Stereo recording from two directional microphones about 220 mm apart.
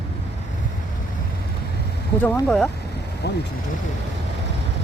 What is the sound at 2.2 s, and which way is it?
Speech, 5° left (ahead or behind).